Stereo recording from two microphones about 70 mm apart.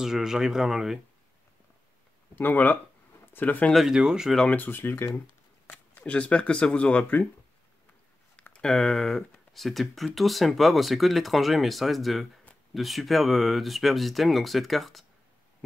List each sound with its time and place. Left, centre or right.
0.0 s speech: centre
2.3 s speech: left
3.7 s speech: centre
4.5 s speech: left
6.0 s speech: centre
8.5 s speech: centre